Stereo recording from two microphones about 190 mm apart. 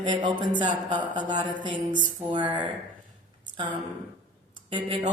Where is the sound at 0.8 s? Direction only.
25° right (ahead or behind).